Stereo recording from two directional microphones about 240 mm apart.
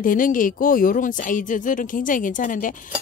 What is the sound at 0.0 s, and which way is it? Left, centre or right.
Speech, left.